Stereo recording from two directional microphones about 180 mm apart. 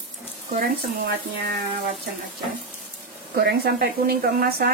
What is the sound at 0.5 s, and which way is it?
Speech, 55° right (ahead or behind).